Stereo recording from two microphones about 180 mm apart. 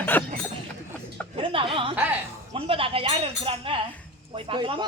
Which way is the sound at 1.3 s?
30° right (ahead or behind).